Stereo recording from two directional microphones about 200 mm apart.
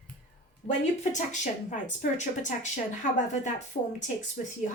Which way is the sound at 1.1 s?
40° left (ahead or behind).